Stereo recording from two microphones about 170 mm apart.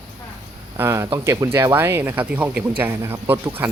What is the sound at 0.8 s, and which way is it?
Speech, 15° right (ahead or behind).